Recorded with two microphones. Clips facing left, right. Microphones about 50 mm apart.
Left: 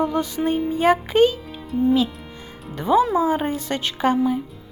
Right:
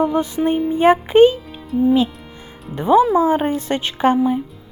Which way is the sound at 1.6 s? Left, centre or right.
Centre.